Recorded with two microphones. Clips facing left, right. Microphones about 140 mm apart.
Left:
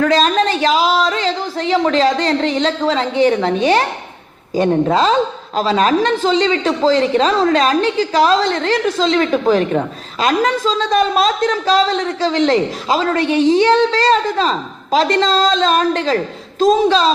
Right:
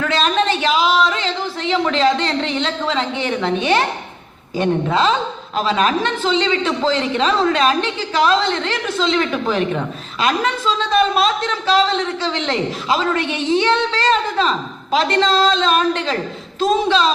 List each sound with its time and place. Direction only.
0.0 s a woman's voice: 40° left (ahead or behind)